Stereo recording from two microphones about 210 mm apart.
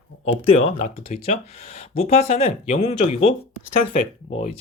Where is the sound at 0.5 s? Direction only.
30° left (ahead or behind).